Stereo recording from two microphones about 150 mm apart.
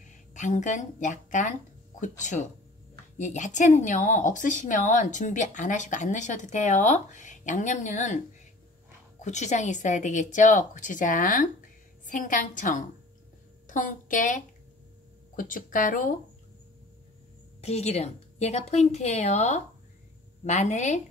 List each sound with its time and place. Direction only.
0.0 s a woman's voice: 55° left (ahead or behind)
9.2 s a woman's voice: 50° left (ahead or behind)
17.6 s a woman's voice: 45° left (ahead or behind)